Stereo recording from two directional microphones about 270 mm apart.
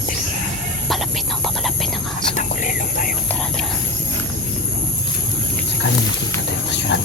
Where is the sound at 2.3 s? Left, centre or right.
Left.